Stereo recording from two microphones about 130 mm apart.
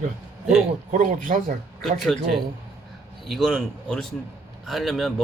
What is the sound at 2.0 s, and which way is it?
Speech, centre (ahead or behind).